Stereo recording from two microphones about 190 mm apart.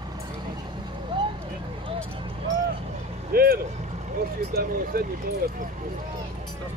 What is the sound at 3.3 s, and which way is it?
Vehicle, 55° right (ahead or behind).